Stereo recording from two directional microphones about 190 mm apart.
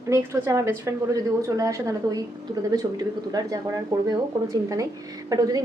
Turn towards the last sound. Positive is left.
turn(degrees=-20)  # may be behind; listen again after turning